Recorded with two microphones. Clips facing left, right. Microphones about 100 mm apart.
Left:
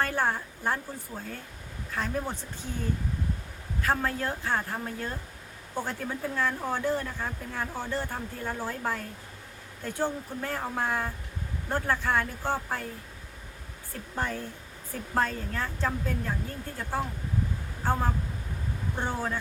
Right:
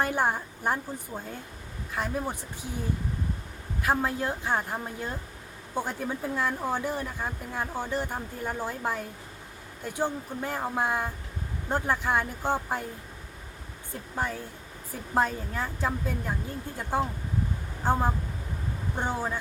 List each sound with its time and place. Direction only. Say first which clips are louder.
0.0 s speech: right 1 dB; 15° right (ahead or behind)
3.8 s speech: right 1 dB; 15° right (ahead or behind)
13.9 s speech: right 1 dB; 10° right (ahead or behind)